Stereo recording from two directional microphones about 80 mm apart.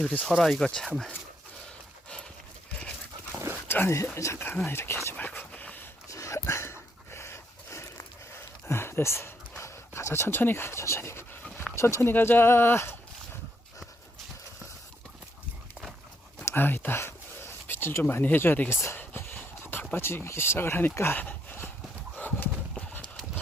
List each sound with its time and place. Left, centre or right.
0.0 s speech: centre
0.3 s speech: centre
3.7 s speech: left
5.1 s speech: left
5.5 s dog: left
6.1 s a sound: left
6.4 s dog: left
11.7 s speech: left
16.6 s a sound: left
18.1 s speech: left
18.8 s a sound: left
19.9 s speech: left
22.1 s clip-clop: left
22.9 s horse: left